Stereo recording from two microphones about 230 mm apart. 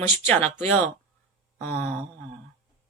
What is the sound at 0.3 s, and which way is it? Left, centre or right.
Speech, centre.